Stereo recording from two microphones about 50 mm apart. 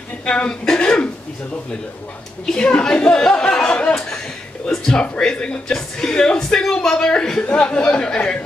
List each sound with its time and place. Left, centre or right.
0.2 s speech: centre
2.4 s speech: centre
7.5 s speech: left